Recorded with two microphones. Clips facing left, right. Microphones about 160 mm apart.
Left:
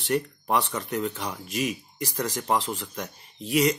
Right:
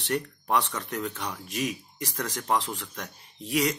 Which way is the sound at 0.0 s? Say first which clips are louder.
Left 3 dB; 5° left (ahead or behind).